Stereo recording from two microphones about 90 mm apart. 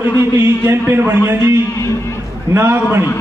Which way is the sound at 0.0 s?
25° right (ahead or behind).